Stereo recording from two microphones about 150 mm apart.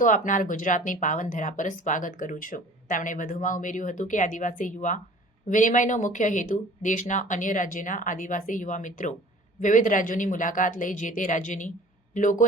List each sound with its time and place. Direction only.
0.0 s speech: 60° left (ahead or behind)